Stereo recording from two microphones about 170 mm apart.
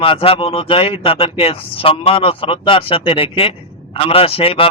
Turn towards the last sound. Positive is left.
turn(degrees=35)  # may be behind; listen again after turning